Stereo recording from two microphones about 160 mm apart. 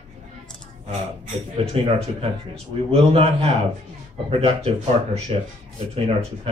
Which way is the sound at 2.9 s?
40° right (ahead or behind).